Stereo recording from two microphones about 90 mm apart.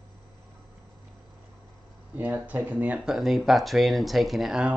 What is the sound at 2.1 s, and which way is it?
Speech, 20° right (ahead or behind).